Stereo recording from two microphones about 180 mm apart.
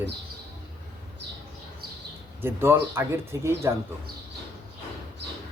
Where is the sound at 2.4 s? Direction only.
15° right (ahead or behind).